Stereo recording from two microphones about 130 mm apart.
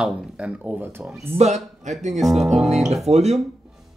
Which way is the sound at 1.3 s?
60° right (ahead or behind).